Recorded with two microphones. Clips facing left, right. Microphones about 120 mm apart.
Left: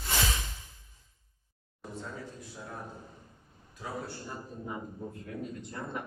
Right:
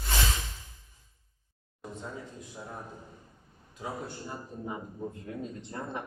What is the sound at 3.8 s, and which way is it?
A man's voice, 20° right (ahead or behind).